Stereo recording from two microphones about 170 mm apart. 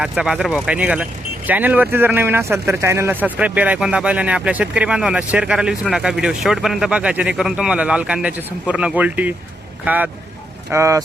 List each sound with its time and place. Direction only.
0.0 s speech: 5° right (ahead or behind)